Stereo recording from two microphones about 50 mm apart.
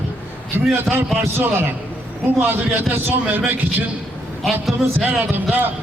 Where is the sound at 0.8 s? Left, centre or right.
Right.